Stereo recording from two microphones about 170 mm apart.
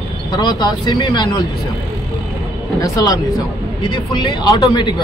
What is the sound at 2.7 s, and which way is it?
A man's voice, 20° left (ahead or behind).